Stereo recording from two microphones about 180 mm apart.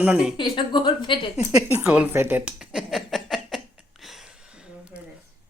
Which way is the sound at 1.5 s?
10° right (ahead or behind).